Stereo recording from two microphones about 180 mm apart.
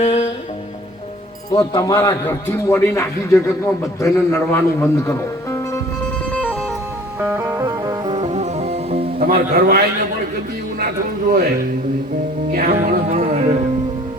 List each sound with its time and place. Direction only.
0.0 s music: 35° left (ahead or behind)
1.5 s a man's voice: 20° left (ahead or behind)
6.3 s music: 10° left (ahead or behind)
7.2 s music: 15° right (ahead or behind); by 9.0 s 35° right (ahead or behind)
9.1 s a man's voice: 50° right (ahead or behind)
12.5 s music: 50° right (ahead or behind)